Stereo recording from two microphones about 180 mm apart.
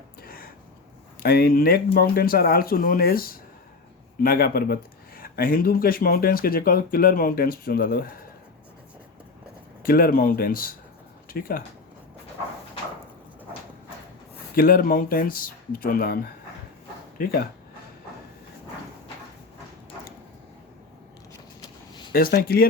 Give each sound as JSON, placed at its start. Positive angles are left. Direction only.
{"t": 0.2, "sound": "a sound", "side_deg": 55}
{"t": 1.2, "sound": "speech", "side_deg": 60}
{"t": 9.8, "sound": "speech", "side_deg": 55}
{"t": 14.5, "sound": "speech", "side_deg": 55}
{"t": 22.1, "sound": "speech", "side_deg": 60}